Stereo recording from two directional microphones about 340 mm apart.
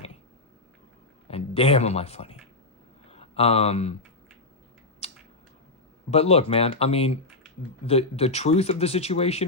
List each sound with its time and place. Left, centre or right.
1.3 s speech: centre
5.0 s a sound: centre
6.1 s speech: centre